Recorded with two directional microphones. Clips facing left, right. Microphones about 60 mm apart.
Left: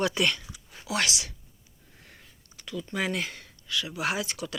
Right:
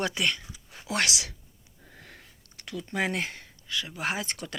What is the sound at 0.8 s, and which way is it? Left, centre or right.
Speech, right.